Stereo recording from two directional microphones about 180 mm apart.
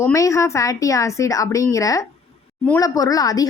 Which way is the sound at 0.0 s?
15° left (ahead or behind).